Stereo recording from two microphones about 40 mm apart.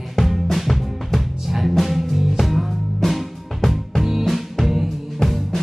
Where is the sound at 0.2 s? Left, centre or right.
Centre.